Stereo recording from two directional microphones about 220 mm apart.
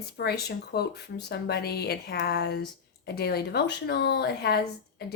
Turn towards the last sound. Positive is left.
turn(degrees=45)  # may be behind; listen again after turning